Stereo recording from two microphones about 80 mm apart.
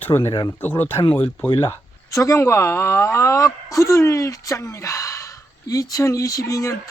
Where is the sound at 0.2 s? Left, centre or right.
Left.